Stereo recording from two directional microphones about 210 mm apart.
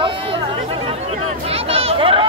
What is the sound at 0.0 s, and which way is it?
Chatter, 25° right (ahead or behind).